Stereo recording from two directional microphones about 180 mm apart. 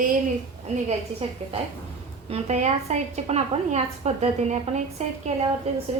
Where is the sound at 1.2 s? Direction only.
35° right (ahead or behind).